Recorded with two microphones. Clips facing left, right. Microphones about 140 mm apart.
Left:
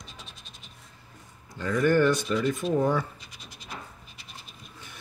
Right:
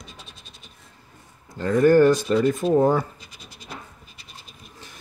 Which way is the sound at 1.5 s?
40° right (ahead or behind).